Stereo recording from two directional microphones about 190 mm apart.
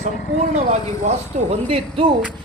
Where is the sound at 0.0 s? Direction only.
40° right (ahead or behind).